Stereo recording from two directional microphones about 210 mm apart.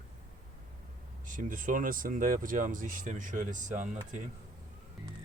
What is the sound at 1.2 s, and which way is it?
Speech, 40° right (ahead or behind).